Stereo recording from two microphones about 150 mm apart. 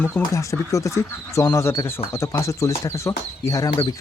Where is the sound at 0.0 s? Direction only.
20° left (ahead or behind).